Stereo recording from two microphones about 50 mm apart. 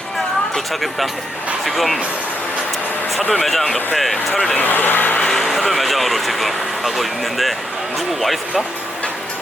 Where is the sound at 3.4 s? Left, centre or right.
Centre.